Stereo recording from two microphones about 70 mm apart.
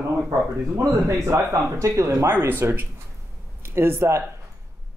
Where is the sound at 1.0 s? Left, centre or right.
Right.